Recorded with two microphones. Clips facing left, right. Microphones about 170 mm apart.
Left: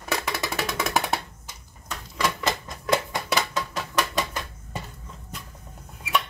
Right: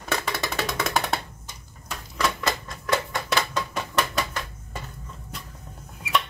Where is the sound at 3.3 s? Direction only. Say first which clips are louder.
Right 1 dB; 5° left (ahead or behind).